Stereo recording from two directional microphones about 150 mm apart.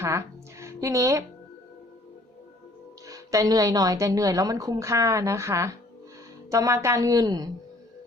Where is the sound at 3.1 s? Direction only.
25° right (ahead or behind).